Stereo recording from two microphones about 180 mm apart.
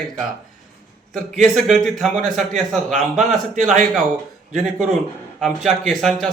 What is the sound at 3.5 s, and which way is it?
Speech, 45° right (ahead or behind).